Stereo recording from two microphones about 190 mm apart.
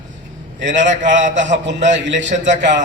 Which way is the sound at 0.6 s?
40° right (ahead or behind).